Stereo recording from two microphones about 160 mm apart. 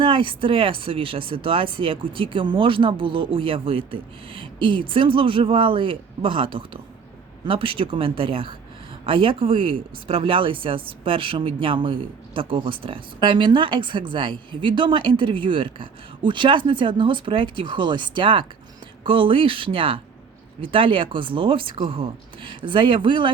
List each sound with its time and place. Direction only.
0.0 s speech: 30° right (ahead or behind)